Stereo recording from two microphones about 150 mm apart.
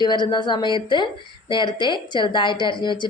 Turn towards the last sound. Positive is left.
turn(degrees=30)  # may be behind; listen again after turning